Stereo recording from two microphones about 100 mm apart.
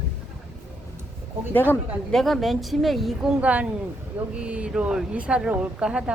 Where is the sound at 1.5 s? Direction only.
20° left (ahead or behind).